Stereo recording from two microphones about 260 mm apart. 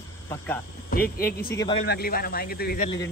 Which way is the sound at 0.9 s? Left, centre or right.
Left.